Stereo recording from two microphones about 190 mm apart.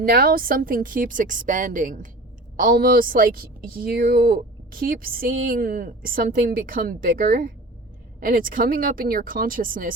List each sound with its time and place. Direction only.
0.0 s speech: 50° right (ahead or behind)